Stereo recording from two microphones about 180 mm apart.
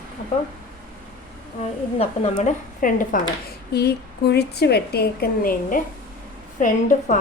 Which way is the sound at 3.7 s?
65° left (ahead or behind).